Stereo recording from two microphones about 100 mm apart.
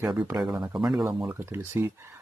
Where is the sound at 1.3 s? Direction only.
25° right (ahead or behind).